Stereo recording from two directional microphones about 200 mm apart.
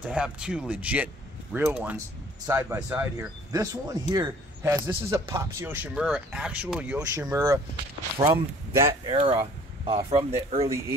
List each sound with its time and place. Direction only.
0.0 s speech: 5° right (ahead or behind)
8.8 s speech: 25° right (ahead or behind)